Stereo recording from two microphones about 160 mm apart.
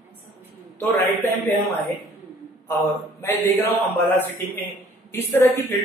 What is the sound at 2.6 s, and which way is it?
A man's voice, 20° left (ahead or behind).